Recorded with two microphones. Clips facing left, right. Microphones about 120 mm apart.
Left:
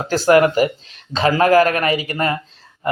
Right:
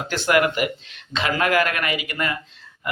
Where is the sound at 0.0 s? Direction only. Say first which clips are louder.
Left 7 dB; 35° left (ahead or behind).